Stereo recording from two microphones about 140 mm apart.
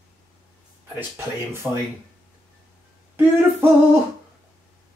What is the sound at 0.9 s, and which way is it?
Speech, 20° right (ahead or behind).